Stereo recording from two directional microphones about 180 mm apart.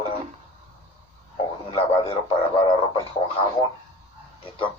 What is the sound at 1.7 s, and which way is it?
Speech, 30° left (ahead or behind).